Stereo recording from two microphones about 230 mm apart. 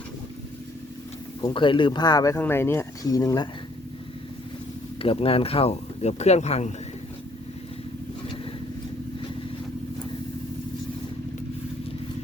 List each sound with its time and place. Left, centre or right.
1.4 s speech: centre
4.9 s speech: left